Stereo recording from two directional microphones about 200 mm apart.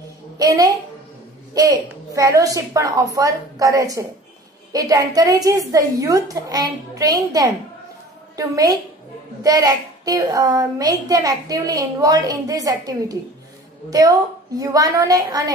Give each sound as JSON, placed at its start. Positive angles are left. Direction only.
{"t": 0.4, "sound": "a woman's voice", "side_deg": -20}